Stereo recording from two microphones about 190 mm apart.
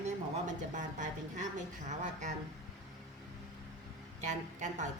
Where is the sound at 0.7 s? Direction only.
40° right (ahead or behind).